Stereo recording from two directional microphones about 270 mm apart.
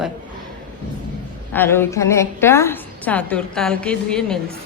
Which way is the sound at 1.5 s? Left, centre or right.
Centre.